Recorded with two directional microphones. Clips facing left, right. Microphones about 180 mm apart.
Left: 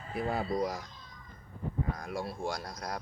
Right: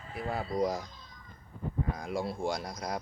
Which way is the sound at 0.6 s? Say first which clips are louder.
Right 3 dB; 20° right (ahead or behind).